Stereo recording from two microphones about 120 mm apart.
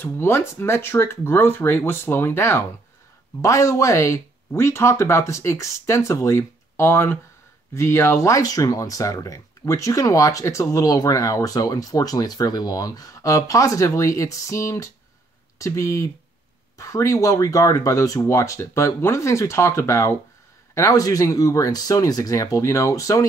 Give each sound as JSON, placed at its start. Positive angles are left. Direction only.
{"t": 0.0, "sound": "speech", "side_deg": 20}